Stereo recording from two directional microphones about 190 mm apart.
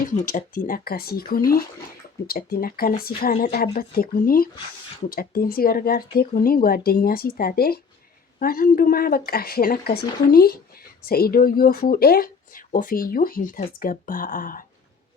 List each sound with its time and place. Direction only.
0.2 s speech: 40° left (ahead or behind)